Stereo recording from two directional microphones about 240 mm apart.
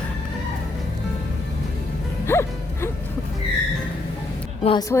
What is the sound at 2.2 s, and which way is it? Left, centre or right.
Music, centre.